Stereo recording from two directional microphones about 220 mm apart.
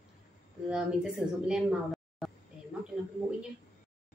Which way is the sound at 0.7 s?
5° right (ahead or behind).